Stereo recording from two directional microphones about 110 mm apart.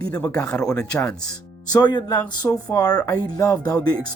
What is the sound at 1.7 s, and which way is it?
Speech, 40° left (ahead or behind).